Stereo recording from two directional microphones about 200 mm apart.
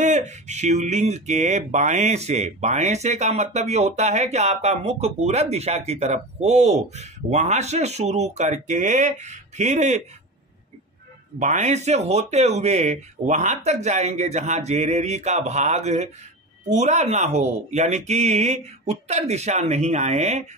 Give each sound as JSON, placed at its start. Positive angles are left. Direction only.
{"t": 0.0, "sound": "speech", "side_deg": -35}
{"t": 11.3, "sound": "speech", "side_deg": -40}